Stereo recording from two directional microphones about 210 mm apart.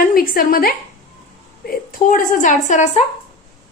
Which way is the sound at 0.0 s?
45° left (ahead or behind).